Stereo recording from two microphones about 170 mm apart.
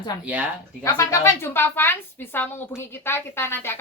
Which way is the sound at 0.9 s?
15° left (ahead or behind).